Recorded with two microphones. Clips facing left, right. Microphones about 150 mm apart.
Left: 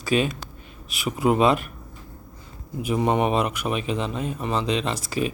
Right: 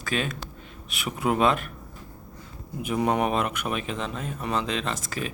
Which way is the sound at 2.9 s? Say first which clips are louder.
Left 3 dB; centre (ahead or behind).